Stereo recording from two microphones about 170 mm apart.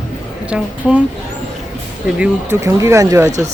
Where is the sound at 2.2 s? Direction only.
15° right (ahead or behind).